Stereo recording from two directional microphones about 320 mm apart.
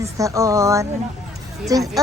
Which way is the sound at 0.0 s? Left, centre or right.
Centre.